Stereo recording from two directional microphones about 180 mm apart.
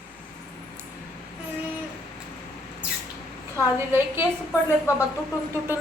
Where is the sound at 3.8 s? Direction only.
15° right (ahead or behind).